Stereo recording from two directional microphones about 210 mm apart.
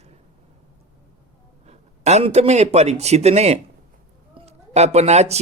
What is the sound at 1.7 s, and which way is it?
Speech, 30° right (ahead or behind).